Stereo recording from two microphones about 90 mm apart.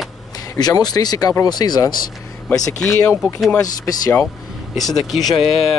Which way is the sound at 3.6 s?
40° left (ahead or behind).